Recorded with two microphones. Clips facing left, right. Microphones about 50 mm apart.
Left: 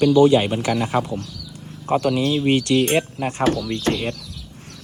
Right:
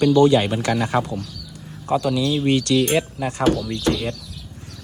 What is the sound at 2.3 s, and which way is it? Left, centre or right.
Speech, centre.